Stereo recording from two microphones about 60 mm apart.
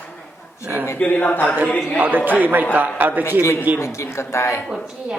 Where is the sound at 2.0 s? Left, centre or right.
Right.